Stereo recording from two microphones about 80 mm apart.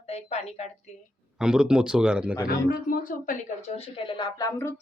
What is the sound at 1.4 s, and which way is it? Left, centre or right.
Speech, centre.